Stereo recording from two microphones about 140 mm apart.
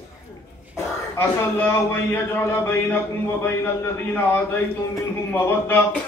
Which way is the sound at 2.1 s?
15° left (ahead or behind).